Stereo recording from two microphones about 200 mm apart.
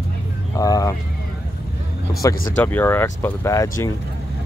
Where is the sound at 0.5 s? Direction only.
15° left (ahead or behind).